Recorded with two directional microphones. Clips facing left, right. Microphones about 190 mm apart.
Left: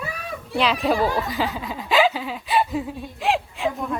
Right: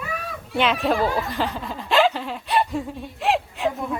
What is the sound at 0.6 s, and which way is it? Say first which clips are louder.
Speech: even; centre (ahead or behind).